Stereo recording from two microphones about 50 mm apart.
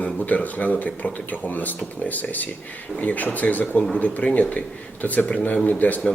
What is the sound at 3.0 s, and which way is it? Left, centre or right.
Speech, left.